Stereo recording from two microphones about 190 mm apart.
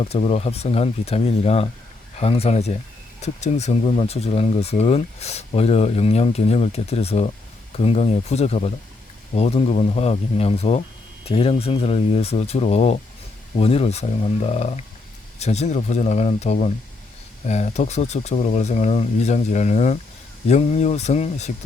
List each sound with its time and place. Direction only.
0.0 s speech: 35° left (ahead or behind)